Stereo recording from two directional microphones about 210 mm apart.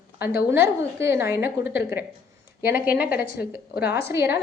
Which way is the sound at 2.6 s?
10° right (ahead or behind).